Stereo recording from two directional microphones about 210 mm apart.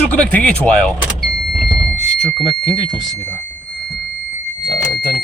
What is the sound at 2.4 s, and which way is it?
Speech, 20° right (ahead or behind).